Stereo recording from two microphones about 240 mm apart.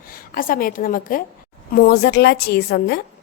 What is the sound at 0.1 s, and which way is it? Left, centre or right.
A woman's voice, left.